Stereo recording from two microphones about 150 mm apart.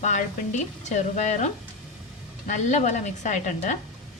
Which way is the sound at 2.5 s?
50° left (ahead or behind).